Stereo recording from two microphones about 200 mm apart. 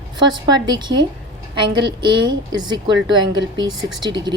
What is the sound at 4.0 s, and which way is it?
Speech, 20° right (ahead or behind).